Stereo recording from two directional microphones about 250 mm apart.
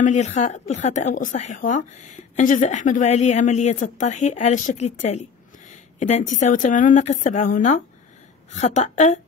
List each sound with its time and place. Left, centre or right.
0.0 s a woman's voice: left